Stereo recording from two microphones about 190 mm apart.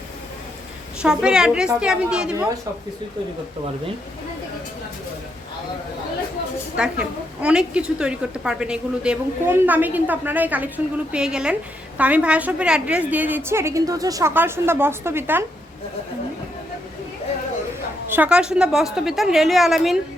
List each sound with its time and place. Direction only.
1.0 s a woman's voice: 5° right (ahead or behind)
6.7 s a woman's voice: 5° right (ahead or behind)
18.1 s a woman's voice: 5° right (ahead or behind)